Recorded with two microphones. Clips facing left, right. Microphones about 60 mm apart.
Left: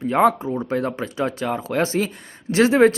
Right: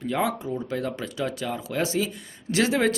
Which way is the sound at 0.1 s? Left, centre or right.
Left.